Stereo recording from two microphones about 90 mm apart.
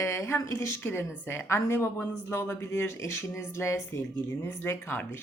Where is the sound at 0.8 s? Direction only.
20° left (ahead or behind).